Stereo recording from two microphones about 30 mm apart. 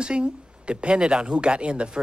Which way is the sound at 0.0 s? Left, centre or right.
Right.